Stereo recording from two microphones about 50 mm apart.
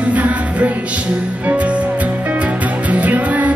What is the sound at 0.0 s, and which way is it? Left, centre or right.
Music, right.